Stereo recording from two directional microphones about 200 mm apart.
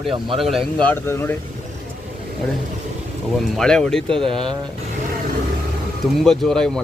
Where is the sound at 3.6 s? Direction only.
5° left (ahead or behind).